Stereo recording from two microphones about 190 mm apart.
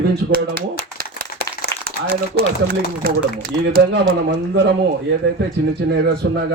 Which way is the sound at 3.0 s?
50° right (ahead or behind).